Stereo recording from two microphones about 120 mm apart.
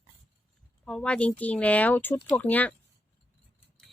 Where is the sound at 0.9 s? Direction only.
5° left (ahead or behind).